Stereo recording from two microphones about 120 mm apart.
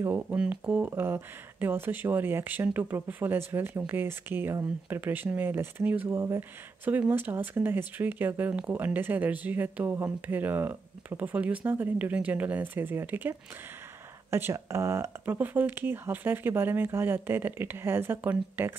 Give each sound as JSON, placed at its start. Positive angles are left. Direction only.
{"t": 0.0, "sound": "speech", "side_deg": -15}